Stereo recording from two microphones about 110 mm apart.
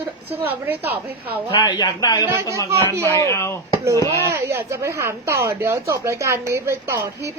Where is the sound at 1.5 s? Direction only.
50° left (ahead or behind).